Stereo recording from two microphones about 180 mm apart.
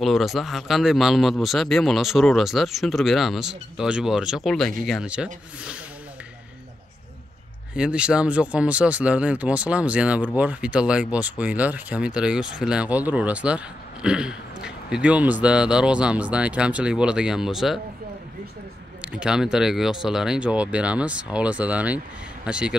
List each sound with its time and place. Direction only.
0.0 s speech: centre (ahead or behind)
7.7 s speech: 5° right (ahead or behind)
18.9 s speech: 5° right (ahead or behind)